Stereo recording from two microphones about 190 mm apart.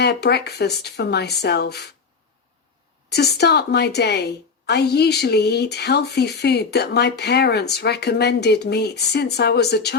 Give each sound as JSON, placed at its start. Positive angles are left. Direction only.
{"t": 0.0, "sound": "a woman's voice", "side_deg": 60}
{"t": 3.1, "sound": "a woman's voice", "side_deg": 60}